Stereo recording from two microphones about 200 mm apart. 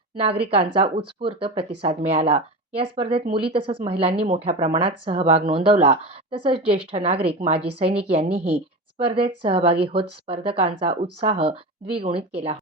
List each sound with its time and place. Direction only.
0.2 s speech: 30° right (ahead or behind)